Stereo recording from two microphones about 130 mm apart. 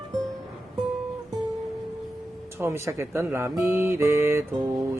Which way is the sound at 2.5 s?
20° right (ahead or behind).